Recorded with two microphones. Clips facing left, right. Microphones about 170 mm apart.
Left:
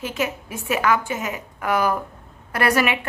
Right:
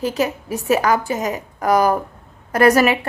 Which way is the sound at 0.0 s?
35° right (ahead or behind).